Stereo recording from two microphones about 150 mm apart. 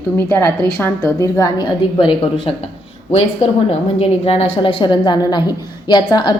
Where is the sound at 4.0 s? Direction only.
40° left (ahead or behind).